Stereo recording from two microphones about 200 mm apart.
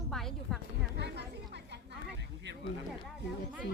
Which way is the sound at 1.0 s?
55° right (ahead or behind).